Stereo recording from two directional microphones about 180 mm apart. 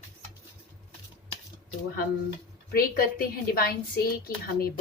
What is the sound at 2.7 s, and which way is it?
Speech, 55° left (ahead or behind).